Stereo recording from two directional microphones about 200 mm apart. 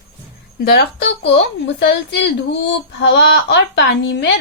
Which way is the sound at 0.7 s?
60° left (ahead or behind).